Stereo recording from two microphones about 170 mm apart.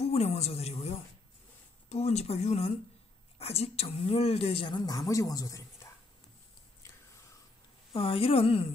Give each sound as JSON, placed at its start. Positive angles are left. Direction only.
{"t": 0.0, "sound": "a woman's voice", "side_deg": 40}
{"t": 7.9, "sound": "a woman's voice", "side_deg": 30}